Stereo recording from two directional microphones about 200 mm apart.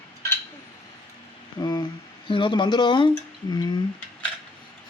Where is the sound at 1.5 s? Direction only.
20° left (ahead or behind).